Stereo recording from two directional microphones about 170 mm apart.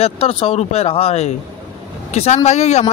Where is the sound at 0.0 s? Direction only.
35° left (ahead or behind).